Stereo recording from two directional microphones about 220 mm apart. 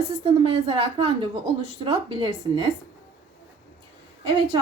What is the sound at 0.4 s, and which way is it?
Speech, 25° right (ahead or behind).